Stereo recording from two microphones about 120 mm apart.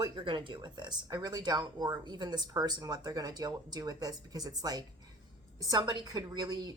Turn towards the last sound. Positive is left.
turn(degrees=-35)  # may be behind; listen again after turning